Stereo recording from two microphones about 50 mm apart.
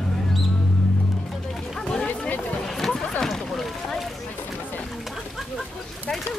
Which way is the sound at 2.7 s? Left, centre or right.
Centre.